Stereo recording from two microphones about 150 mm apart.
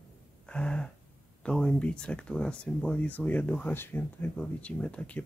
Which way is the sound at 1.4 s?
5° left (ahead or behind).